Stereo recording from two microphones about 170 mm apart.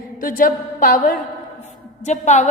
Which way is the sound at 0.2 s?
55° left (ahead or behind).